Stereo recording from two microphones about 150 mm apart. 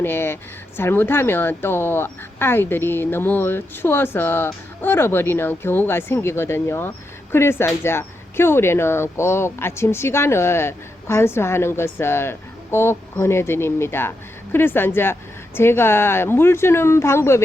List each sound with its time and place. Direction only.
0.0 s speech: 15° left (ahead or behind)